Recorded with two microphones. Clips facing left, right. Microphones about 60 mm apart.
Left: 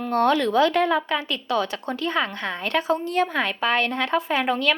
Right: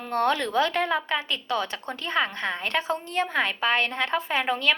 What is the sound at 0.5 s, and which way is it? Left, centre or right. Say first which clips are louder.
A woman's voice: left 5 dB; right.